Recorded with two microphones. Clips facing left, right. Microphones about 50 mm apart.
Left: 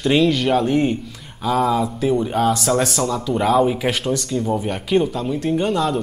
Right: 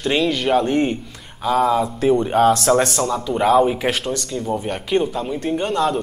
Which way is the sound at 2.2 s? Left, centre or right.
Centre.